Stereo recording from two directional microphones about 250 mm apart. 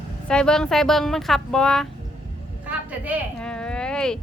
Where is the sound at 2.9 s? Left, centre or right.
Centre.